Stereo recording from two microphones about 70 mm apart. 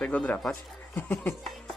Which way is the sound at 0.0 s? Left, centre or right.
Left.